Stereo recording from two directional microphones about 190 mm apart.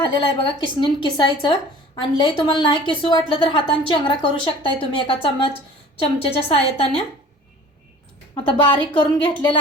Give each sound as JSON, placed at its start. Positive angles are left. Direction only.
{"t": 0.0, "sound": "a woman's voice", "side_deg": 25}
{"t": 8.4, "sound": "a woman's voice", "side_deg": 10}
{"t": 8.8, "sound": "a woman's voice", "side_deg": 25}